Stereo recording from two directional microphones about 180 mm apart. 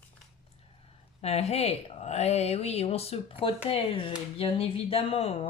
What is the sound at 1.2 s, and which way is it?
A woman's voice, 35° left (ahead or behind).